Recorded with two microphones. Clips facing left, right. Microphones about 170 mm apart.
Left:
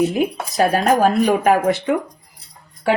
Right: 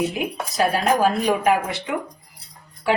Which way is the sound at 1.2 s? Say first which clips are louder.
Left 4 dB; 50° left (ahead or behind).